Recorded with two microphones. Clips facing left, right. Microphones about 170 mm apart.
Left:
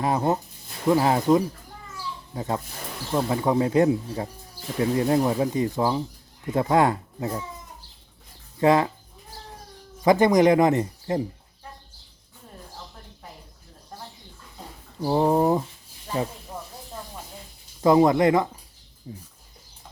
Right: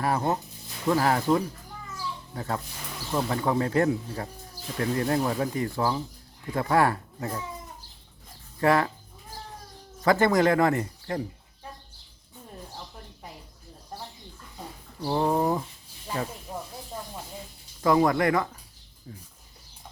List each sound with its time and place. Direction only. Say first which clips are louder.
0.0 s speech: left 3 dB; 20° left (ahead or behind)
8.6 s speech: left 3 dB; 20° left (ahead or behind)
10.0 s speech: left 4 dB; 15° left (ahead or behind)
15.0 s speech: left 4 dB; 20° left (ahead or behind)
17.7 s speech: left 4 dB; 25° left (ahead or behind)